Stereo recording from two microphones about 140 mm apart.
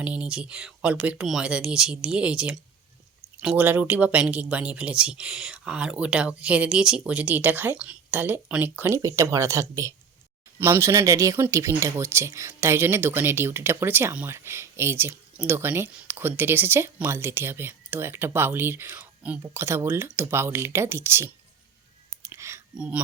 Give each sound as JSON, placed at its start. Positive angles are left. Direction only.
{"t": 0.0, "sound": "speech", "side_deg": -10}
{"t": 22.2, "sound": "whispering", "side_deg": -20}
{"t": 22.8, "sound": "speech", "side_deg": -10}